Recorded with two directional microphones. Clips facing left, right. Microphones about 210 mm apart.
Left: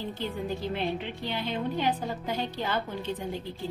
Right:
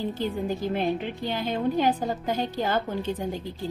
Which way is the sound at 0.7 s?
45° right (ahead or behind).